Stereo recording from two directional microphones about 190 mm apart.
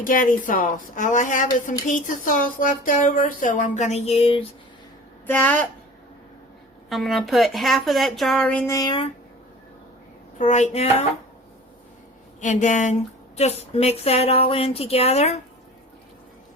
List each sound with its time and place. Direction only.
0.0 s speech: 45° left (ahead or behind); by 4.4 s 30° left (ahead or behind)
5.2 s a woman's voice: 10° left (ahead or behind)
6.9 s speech: centre (ahead or behind); by 9.0 s 20° left (ahead or behind)
10.3 s speech: 40° left (ahead or behind)
12.4 s speech: 40° left (ahead or behind)